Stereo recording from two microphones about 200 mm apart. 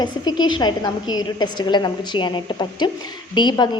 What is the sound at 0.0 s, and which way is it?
A woman's voice, 20° left (ahead or behind).